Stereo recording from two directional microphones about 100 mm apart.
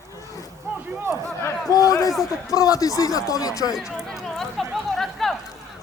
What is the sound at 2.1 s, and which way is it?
Speech, centre (ahead or behind).